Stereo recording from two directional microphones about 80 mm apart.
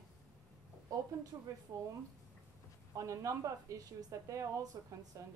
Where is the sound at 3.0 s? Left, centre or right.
Right.